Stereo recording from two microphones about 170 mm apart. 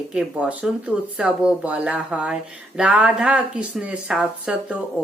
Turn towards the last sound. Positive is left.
turn(degrees=-10)  # may be behind; listen again after turning